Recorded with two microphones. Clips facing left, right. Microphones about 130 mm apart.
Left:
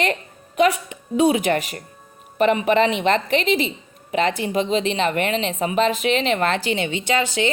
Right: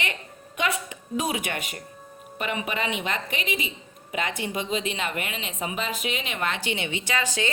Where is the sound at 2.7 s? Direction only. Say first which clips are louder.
Left 11 dB; 60° left (ahead or behind).